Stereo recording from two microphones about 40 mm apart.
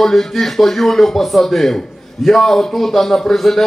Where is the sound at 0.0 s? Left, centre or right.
Centre.